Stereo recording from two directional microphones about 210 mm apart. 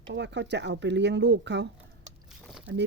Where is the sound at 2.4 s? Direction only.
Centre (ahead or behind).